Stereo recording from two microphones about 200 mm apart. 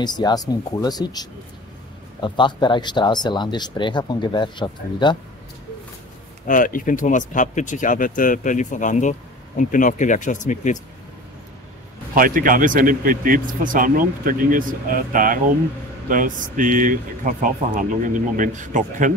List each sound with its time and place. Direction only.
0.0 s speech: 20° left (ahead or behind)
6.4 s speech: 40° left (ahead or behind)
12.2 s speech: 45° right (ahead or behind)